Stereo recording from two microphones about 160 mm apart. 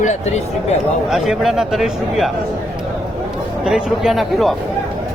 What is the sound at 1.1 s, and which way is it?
A man's voice, centre (ahead or behind).